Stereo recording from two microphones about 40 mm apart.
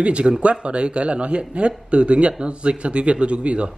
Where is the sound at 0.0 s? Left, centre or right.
Right.